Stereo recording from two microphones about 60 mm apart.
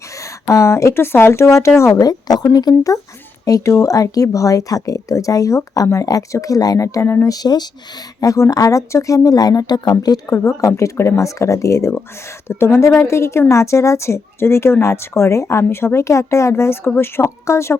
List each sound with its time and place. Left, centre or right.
0.4 s speech: left
2.0 s speech: left
3.7 s speech: left
4.9 s speech: left
7.4 s speech: left
8.4 s speech: left
8.9 s speech: left
10.7 s speech: left
12.5 s speech: left
17.2 s speech: left